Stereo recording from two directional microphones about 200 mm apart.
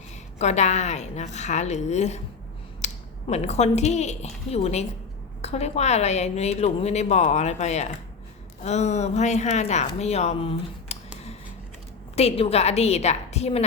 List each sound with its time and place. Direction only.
0.3 s a woman's voice: 35° left (ahead or behind)
12.1 s a woman's voice: 30° left (ahead or behind)